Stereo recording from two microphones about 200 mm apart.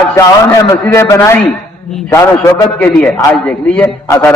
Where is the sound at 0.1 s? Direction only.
15° left (ahead or behind).